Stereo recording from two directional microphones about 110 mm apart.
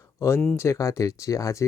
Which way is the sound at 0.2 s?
25° left (ahead or behind).